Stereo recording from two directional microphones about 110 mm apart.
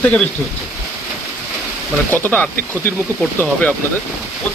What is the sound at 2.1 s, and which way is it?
Speech, 15° left (ahead or behind).